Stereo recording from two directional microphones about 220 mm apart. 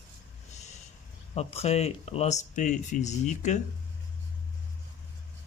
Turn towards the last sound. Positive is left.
turn(degrees=30)  # may be behind; listen again after turning